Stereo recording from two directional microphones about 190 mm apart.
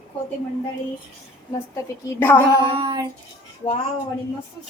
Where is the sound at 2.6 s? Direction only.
25° right (ahead or behind).